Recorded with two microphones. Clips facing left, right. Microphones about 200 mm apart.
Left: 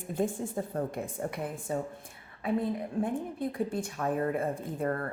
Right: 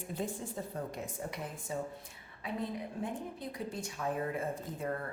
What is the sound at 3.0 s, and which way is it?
A woman's voice, 50° left (ahead or behind).